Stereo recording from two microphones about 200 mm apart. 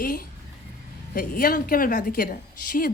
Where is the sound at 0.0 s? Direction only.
45° left (ahead or behind).